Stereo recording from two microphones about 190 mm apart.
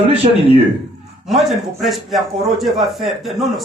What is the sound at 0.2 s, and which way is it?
Speech, 35° right (ahead or behind).